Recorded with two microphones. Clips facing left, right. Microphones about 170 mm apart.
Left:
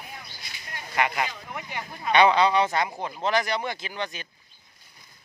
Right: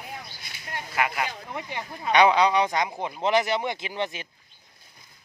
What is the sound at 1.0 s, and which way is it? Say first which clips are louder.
Speech: left 1 dB; 5° right (ahead or behind).